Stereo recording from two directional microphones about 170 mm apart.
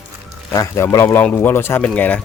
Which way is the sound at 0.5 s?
15° left (ahead or behind).